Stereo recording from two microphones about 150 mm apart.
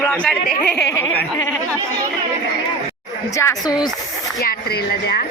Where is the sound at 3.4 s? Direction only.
25° left (ahead or behind).